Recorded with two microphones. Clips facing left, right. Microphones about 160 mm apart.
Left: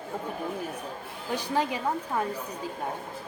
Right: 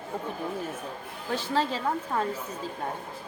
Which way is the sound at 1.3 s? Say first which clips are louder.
Even; 15° left (ahead or behind).